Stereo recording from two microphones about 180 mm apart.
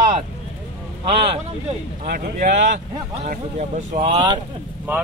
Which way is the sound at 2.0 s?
55° right (ahead or behind).